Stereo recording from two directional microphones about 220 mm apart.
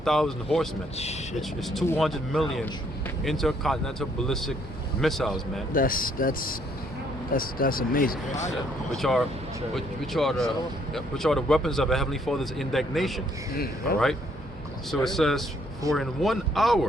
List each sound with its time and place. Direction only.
0.0 s speech: centre (ahead or behind)
0.9 s speech: 30° left (ahead or behind)
1.4 s speech: centre (ahead or behind)
5.7 s speech: 40° left (ahead or behind)
9.0 s speech: centre (ahead or behind)
13.5 s speech: 45° left (ahead or behind)
14.8 s speech: centre (ahead or behind)